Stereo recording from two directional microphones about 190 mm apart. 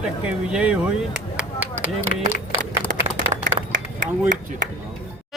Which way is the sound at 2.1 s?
50° left (ahead or behind).